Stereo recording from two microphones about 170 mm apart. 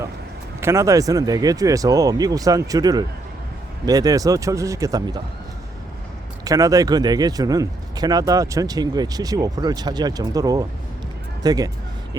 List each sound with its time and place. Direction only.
0.6 s speech: 15° right (ahead or behind)
6.4 s speech: 20° right (ahead or behind)